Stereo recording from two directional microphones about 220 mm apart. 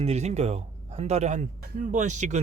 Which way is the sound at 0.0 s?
30° right (ahead or behind).